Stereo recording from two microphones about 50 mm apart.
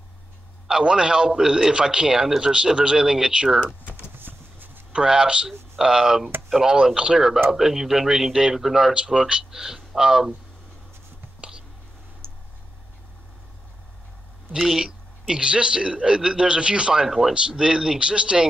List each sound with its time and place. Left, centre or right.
0.7 s speech: centre
3.6 s a sound: left
4.2 s clip-clop: right
4.9 s speech: centre
14.8 s a man's voice: centre